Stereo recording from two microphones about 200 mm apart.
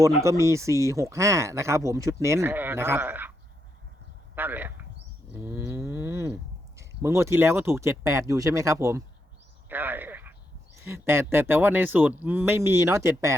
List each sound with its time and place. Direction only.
0.0 s speech: 15° right (ahead or behind)
4.4 s speech: 10° right (ahead or behind)
9.6 s a sound: 10° right (ahead or behind)
10.8 s speech: 10° right (ahead or behind)